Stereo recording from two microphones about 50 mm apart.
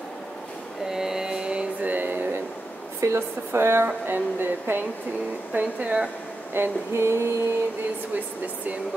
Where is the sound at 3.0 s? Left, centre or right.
Right.